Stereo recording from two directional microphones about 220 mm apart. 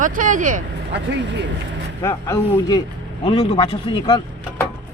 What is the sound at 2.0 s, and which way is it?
Speech, 15° left (ahead or behind).